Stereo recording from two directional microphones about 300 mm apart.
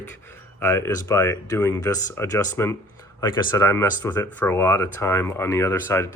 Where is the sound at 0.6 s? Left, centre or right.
Centre.